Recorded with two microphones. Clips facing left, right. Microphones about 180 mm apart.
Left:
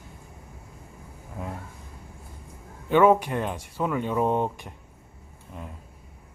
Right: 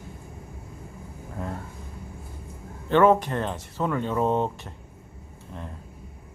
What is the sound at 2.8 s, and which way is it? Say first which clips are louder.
Speech: even; 10° left (ahead or behind).